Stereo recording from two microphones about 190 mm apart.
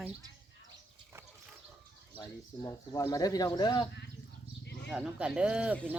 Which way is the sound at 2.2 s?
20° left (ahead or behind).